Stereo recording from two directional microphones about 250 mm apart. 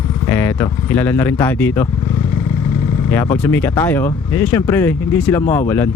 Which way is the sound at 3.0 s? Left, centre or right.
Centre.